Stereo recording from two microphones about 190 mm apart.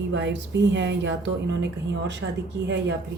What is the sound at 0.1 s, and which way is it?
A woman's voice, 70° right (ahead or behind).